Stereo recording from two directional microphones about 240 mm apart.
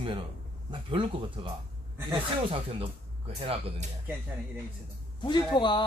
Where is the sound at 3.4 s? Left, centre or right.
Right.